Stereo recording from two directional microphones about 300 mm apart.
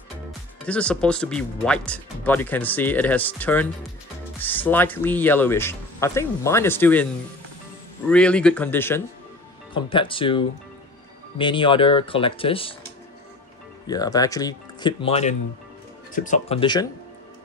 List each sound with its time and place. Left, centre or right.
0.7 s speech: centre
8.1 s speech: centre
13.8 s speech: centre